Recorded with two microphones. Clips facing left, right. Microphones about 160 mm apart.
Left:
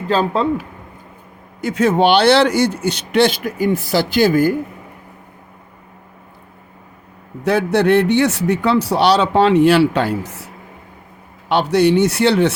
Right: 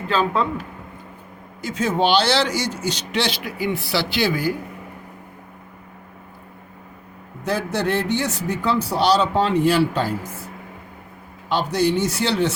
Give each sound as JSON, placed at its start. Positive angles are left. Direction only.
{"t": 0.1, "sound": "speech", "side_deg": 40}
{"t": 1.6, "sound": "speech", "side_deg": 65}
{"t": 7.4, "sound": "a man's voice", "side_deg": 65}